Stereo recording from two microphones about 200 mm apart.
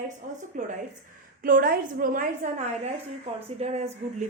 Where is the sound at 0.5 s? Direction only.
40° right (ahead or behind).